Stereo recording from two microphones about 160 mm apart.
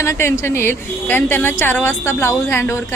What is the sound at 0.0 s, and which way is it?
Speech, 15° left (ahead or behind).